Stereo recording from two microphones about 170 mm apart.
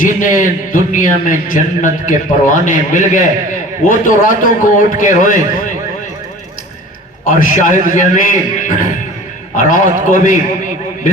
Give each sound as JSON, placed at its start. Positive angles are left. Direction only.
{"t": 0.0, "sound": "a man's voice", "side_deg": 50}
{"t": 7.3, "sound": "a man's voice", "side_deg": 55}